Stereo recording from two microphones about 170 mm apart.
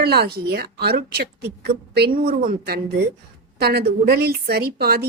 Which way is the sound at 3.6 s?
70° right (ahead or behind).